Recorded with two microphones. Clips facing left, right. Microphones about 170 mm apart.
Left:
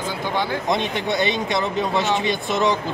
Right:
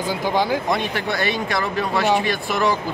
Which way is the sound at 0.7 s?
20° left (ahead or behind).